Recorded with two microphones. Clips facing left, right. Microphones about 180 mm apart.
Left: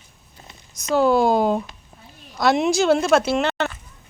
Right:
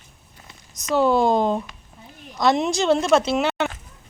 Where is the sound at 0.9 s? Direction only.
Centre (ahead or behind).